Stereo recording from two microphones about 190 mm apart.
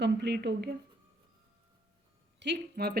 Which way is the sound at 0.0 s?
65° right (ahead or behind).